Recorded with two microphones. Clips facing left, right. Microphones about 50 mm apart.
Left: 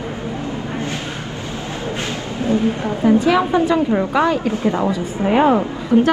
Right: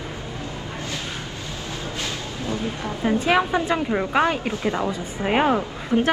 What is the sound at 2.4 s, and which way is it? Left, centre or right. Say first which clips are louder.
Speech: left 10 dB; left.